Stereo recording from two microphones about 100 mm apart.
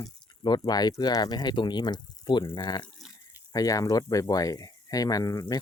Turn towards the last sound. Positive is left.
turn(degrees=35)  # may be behind; listen again after turning